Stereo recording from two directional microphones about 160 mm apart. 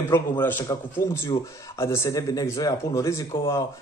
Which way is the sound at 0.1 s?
10° left (ahead or behind).